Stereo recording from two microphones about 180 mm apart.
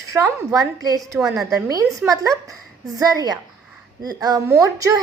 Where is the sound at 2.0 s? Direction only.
20° right (ahead or behind).